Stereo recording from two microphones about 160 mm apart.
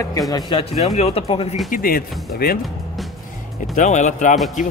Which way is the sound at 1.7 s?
65° left (ahead or behind).